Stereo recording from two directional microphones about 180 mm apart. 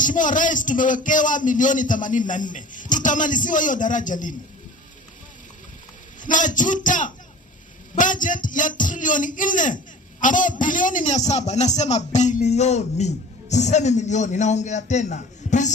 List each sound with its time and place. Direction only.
0.0 s speech: 45° left (ahead or behind)
6.2 s a man's voice: 45° left (ahead or behind)